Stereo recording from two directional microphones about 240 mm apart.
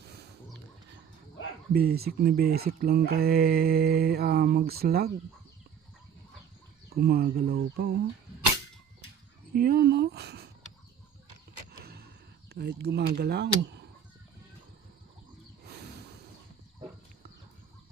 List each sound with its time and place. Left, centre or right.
1.7 s speech: right
6.9 s speech: right
9.5 s speech: right
11.8 s a sound: right
12.5 s speech: right
15.6 s a sound: right